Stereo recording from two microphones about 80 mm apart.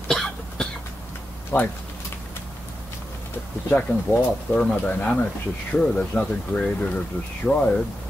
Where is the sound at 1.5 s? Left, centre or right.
Left.